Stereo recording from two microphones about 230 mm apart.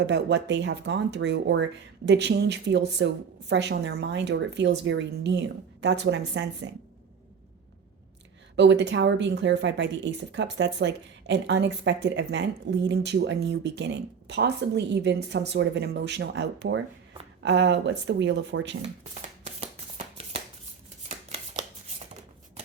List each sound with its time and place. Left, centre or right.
0.0 s speech: right
8.5 s speech: right
19.5 s shuffling cards: right
21.2 s a sound: right